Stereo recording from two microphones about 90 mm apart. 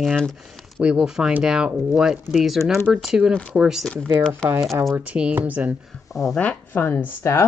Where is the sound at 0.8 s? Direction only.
10° right (ahead or behind).